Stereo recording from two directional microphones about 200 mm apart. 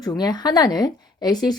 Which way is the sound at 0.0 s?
20° left (ahead or behind).